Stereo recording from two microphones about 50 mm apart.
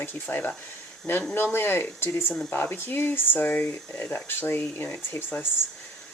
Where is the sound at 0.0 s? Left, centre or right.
Left.